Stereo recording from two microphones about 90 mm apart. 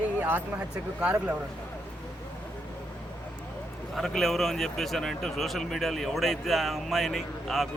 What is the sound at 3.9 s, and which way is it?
Speech, centre (ahead or behind).